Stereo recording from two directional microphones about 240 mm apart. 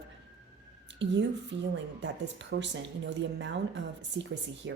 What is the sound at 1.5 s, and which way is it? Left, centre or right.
Speech, right.